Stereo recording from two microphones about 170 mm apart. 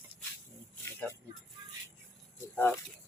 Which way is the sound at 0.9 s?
15° left (ahead or behind).